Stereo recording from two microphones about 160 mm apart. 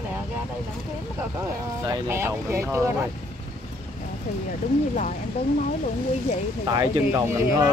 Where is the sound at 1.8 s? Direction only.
15° right (ahead or behind).